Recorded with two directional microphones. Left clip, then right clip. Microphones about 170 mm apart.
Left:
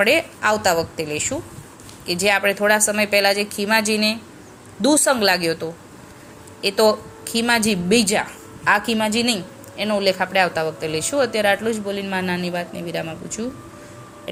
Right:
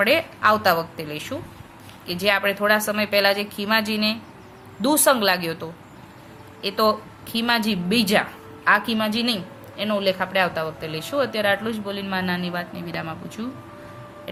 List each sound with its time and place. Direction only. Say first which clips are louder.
0.0 s a woman's voice: left 1 dB; 20° left (ahead or behind)